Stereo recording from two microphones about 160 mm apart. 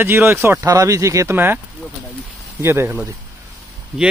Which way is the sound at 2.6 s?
15° right (ahead or behind).